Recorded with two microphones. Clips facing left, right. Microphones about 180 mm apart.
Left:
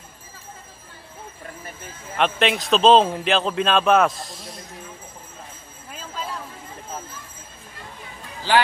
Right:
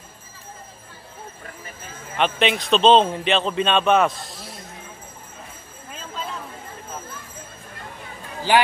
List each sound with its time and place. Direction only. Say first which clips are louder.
2.1 s a man's voice: even; centre (ahead or behind)
8.5 s speech: right 1 dB; 15° right (ahead or behind)